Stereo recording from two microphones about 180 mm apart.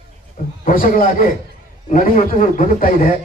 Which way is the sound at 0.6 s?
50° left (ahead or behind).